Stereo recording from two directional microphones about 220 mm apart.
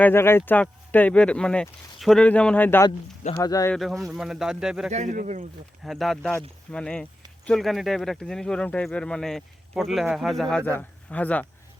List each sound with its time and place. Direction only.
0.0 s speech: 10° left (ahead or behind)
3.8 s speech: centre (ahead or behind)
4.9 s speech: 35° right (ahead or behind)
5.8 s speech: centre (ahead or behind)